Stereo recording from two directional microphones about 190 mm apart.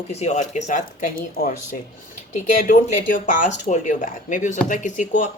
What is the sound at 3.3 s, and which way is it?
Speech, 40° left (ahead or behind).